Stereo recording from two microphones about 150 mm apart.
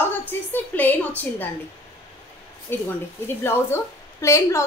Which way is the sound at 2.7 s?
15° left (ahead or behind).